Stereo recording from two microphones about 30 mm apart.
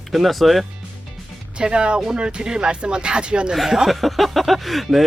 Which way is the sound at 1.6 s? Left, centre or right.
Right.